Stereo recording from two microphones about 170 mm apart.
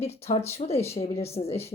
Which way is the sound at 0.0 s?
35° left (ahead or behind).